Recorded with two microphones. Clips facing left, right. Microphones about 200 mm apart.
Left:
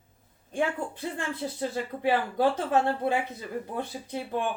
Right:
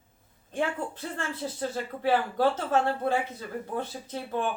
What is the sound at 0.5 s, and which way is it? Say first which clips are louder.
Speech: left 1 dB; 15° left (ahead or behind).